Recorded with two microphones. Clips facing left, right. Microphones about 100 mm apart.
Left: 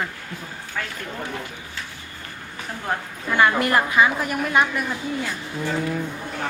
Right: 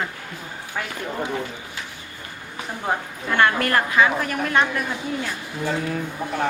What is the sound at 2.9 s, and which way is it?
Speech, 15° right (ahead or behind).